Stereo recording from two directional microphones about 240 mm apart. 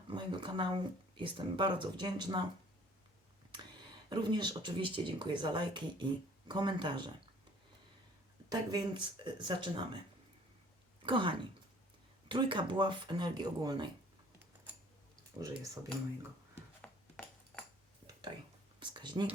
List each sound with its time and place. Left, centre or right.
0.1 s speech: centre
3.5 s speech: centre
8.4 s speech: centre
11.0 s speech: right
15.4 s speech: centre
16.8 s ping: centre
18.0 s a sound: centre
18.8 s speech: centre